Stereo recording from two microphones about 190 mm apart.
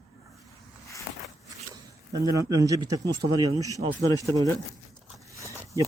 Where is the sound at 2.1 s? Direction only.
20° right (ahead or behind).